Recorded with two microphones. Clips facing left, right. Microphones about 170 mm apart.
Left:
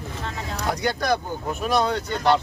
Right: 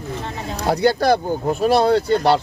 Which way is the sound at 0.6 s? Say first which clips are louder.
Right 9 dB; 35° right (ahead or behind).